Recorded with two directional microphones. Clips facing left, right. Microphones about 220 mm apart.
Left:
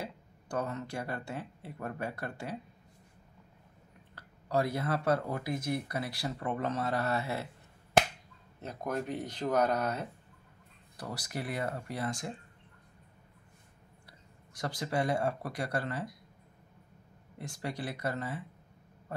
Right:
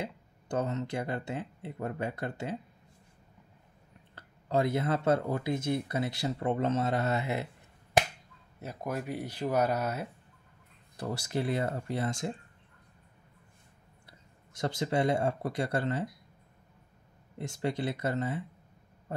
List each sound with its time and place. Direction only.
0.0 s speech: 20° right (ahead or behind)
4.1 s speech: 20° right (ahead or behind)
8.5 s speech: 5° right (ahead or behind)
11.0 s speech: 25° right (ahead or behind)
14.5 s speech: 25° right (ahead or behind)
17.4 s speech: 25° right (ahead or behind)